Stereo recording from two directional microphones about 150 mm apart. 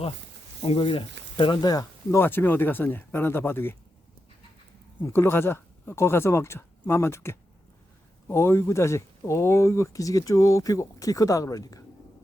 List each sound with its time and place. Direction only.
0.6 s speech: 40° left (ahead or behind); by 3.8 s 15° left (ahead or behind)
5.0 s speech: 15° left (ahead or behind)